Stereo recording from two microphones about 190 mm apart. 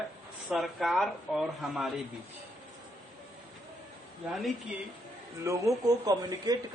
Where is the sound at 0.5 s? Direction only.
Centre (ahead or behind).